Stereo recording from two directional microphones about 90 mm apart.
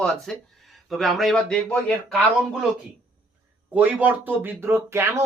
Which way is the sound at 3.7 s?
20° right (ahead or behind).